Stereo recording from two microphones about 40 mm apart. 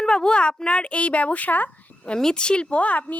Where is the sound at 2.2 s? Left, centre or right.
Centre; by 3.1 s left.